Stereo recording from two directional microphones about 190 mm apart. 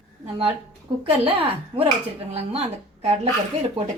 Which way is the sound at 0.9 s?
25° right (ahead or behind).